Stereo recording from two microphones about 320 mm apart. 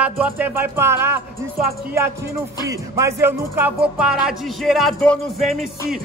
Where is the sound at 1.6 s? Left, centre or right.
Right.